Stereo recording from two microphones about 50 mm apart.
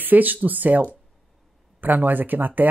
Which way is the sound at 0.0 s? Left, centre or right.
Right.